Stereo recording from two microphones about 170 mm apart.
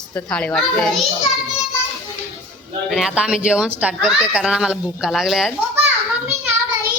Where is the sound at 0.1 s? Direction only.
5° left (ahead or behind).